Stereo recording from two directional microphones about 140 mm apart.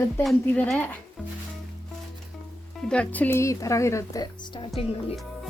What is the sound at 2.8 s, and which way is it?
Speech, 10° left (ahead or behind).